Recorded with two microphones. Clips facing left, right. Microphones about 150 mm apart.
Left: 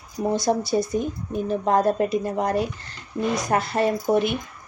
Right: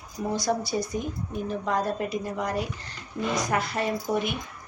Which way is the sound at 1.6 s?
50° left (ahead or behind).